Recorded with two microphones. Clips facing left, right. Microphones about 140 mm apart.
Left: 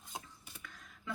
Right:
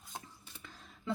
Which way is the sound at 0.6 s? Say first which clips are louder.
Right 1 dB; 30° right (ahead or behind).